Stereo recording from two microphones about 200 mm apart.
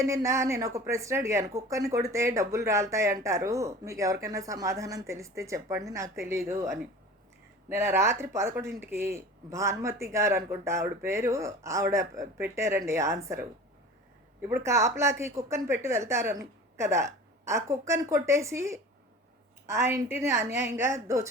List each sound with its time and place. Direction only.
0.0 s speech: 15° right (ahead or behind)
14.4 s speech: 10° right (ahead or behind)